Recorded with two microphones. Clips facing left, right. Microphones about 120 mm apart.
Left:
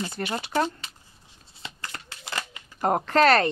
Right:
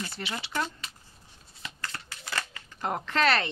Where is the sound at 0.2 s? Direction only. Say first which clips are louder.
Left 7 dB; 50° left (ahead or behind).